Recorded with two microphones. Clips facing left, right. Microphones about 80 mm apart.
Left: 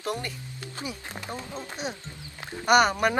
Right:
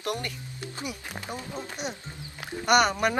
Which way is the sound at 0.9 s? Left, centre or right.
Centre.